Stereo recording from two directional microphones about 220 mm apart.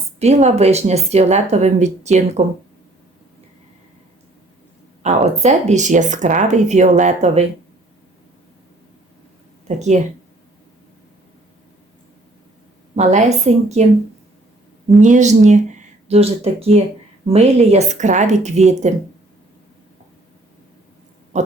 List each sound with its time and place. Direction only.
0.2 s speech: 30° right (ahead or behind)
5.0 s speech: 30° right (ahead or behind)
9.6 s speech: 30° right (ahead or behind)
13.0 s speech: 30° right (ahead or behind)
15.0 s speech: 35° right (ahead or behind)
21.3 s speech: 30° right (ahead or behind)